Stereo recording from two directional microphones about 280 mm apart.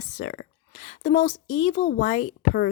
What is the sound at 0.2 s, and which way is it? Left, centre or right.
Speech, left.